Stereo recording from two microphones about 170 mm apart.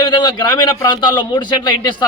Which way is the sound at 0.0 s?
25° left (ahead or behind).